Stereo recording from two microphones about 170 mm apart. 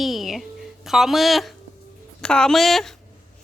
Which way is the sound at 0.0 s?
Centre (ahead or behind).